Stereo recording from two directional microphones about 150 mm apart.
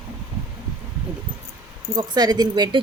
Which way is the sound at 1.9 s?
30° right (ahead or behind).